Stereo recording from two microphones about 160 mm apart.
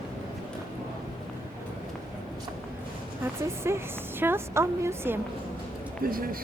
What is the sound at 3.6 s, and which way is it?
A woman's voice, 15° right (ahead or behind).